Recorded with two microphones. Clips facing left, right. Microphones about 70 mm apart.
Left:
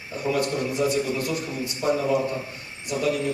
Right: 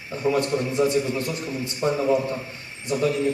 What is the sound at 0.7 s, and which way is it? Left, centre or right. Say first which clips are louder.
A man's voice: right 2 dB; right.